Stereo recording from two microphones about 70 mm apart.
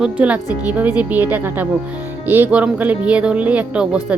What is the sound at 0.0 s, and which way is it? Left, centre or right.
Speech, centre.